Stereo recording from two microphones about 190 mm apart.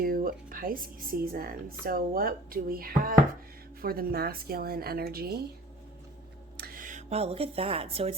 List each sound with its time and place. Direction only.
0.0 s speech: 50° right (ahead or behind)
6.6 s speech: 50° right (ahead or behind); by 8.1 s 30° right (ahead or behind)